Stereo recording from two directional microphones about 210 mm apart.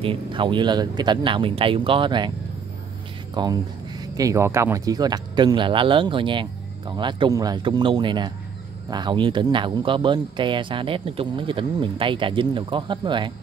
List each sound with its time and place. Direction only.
0.0 s speech: 25° right (ahead or behind)
3.4 s speech: 20° right (ahead or behind)